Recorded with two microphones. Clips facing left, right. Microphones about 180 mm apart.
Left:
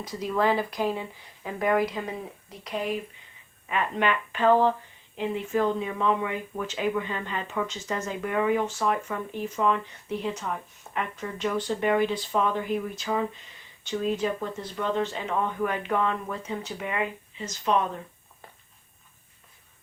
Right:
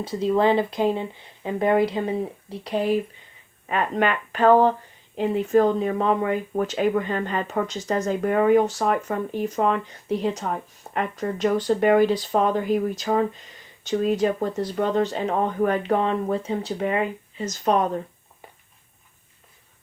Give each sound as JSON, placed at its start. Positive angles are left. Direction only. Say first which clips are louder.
{"t": 0.0, "sound": "speech", "louder": "right 6 dB", "side_deg": -30}
{"t": 3.7, "sound": "speech", "louder": "right 3 dB", "side_deg": -45}
{"t": 18.4, "sound": "a sound", "louder": "right 2 dB", "side_deg": -15}